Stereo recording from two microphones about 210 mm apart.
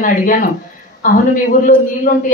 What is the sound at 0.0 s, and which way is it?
A woman's voice, 40° left (ahead or behind).